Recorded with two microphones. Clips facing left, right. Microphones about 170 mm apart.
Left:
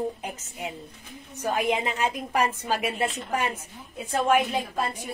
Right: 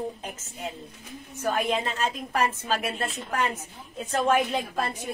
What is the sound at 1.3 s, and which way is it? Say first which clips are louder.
A woman's voice: left 1 dB; 15° left (ahead or behind).